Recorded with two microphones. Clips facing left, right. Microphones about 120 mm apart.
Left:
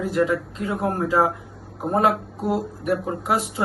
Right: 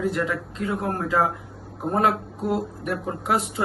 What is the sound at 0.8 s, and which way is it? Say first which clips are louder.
Speech: left 3 dB; 30° left (ahead or behind).